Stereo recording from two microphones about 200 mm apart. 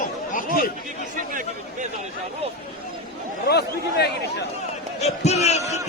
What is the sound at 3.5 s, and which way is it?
Speech, 55° left (ahead or behind).